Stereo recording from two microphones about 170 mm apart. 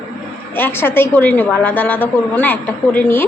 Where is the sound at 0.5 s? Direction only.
10° left (ahead or behind).